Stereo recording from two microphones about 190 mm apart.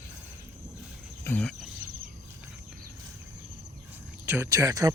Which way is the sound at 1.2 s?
5° left (ahead or behind).